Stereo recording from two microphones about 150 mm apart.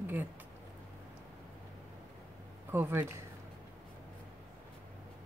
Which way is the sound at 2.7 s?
15° right (ahead or behind).